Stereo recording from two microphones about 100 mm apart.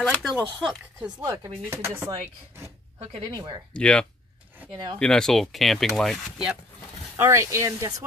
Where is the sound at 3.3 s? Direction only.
40° right (ahead or behind).